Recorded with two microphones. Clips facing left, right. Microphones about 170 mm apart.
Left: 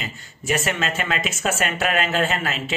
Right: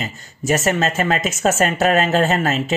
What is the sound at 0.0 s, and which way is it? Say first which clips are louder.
Speech: right 6 dB; 40° right (ahead or behind).